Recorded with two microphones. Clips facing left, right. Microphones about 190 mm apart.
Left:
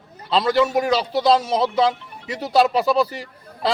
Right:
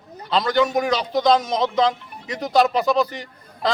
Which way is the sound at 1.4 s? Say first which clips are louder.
Left 2 dB; 30° left (ahead or behind).